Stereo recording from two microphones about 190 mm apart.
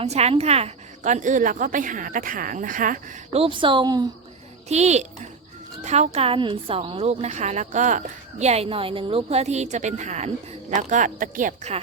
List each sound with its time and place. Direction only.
0.0 s a woman's voice: 35° right (ahead or behind)
3.3 s a woman's voice: 30° right (ahead or behind)
4.7 s a woman's voice: 35° right (ahead or behind)